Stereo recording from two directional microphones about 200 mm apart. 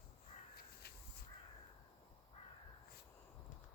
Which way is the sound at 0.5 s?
50° left (ahead or behind).